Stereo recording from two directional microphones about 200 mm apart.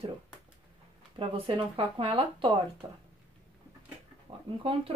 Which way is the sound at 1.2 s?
25° right (ahead or behind).